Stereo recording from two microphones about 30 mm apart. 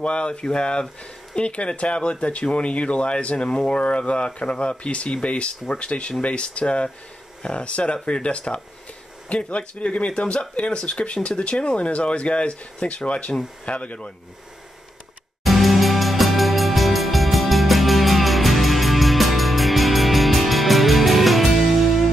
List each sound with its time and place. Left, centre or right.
0.0 s speech: left
3.3 s speech: left
15.4 s music: centre